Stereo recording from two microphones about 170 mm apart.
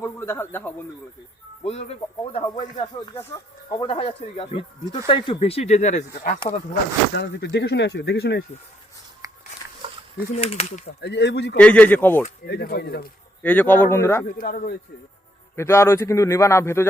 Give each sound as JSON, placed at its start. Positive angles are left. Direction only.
{"t": 0.0, "sound": "a man's voice", "side_deg": 15}
{"t": 1.6, "sound": "speech", "side_deg": 35}
{"t": 3.8, "sound": "speech", "side_deg": 35}
{"t": 7.2, "sound": "speech", "side_deg": 85}
{"t": 9.2, "sound": "a sound", "side_deg": -20}
{"t": 10.3, "sound": "speech", "side_deg": 40}
{"t": 11.0, "sound": "speech", "side_deg": 90}
{"t": 11.5, "sound": "a man's voice", "side_deg": 10}
{"t": 12.5, "sound": "speech", "side_deg": 70}
{"t": 13.4, "sound": "a man's voice", "side_deg": 10}
{"t": 14.3, "sound": "speech", "side_deg": 55}
{"t": 15.5, "sound": "a man's voice", "side_deg": 15}